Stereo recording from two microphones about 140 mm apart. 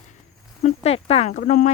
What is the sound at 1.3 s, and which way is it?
Speech, 65° left (ahead or behind).